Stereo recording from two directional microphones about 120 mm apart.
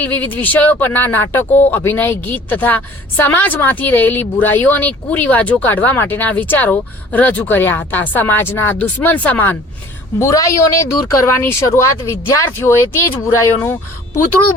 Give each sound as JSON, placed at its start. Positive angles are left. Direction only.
{"t": 0.0, "sound": "a woman's voice", "side_deg": 15}
{"t": 10.2, "sound": "speech", "side_deg": 25}